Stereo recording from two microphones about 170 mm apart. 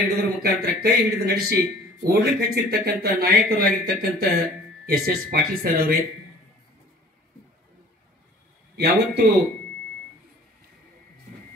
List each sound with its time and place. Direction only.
0.4 s speech: 70° right (ahead or behind)
8.7 s speech: 75° right (ahead or behind)